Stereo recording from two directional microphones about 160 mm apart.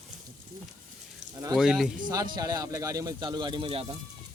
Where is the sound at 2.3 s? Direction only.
25° right (ahead or behind).